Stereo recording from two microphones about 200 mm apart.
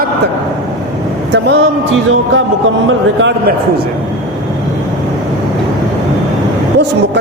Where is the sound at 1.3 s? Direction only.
60° right (ahead or behind).